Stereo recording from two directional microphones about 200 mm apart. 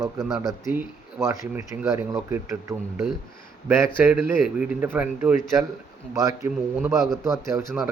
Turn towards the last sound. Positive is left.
turn(degrees=-15)  # may be behind; listen again after turning